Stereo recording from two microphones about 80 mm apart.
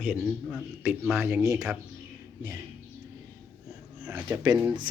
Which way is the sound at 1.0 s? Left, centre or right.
Centre.